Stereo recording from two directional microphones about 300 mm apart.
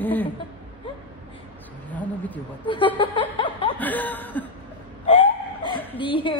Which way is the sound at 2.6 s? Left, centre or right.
Centre.